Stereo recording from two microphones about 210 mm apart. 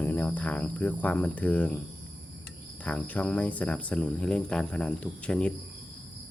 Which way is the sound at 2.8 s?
5° left (ahead or behind).